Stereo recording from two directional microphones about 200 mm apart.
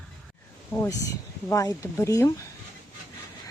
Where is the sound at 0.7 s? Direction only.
10° left (ahead or behind).